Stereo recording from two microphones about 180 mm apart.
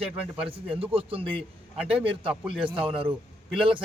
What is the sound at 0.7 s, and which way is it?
A man's voice, 30° right (ahead or behind).